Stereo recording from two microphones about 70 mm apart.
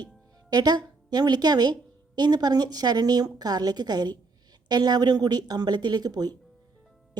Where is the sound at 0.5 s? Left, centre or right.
Right.